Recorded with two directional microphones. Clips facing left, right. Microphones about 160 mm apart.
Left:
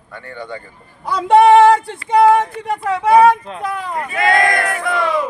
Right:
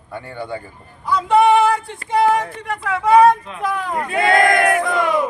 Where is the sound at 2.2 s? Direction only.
40° left (ahead or behind).